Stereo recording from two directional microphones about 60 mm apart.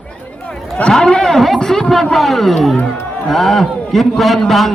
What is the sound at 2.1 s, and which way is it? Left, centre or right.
A man's voice, centre.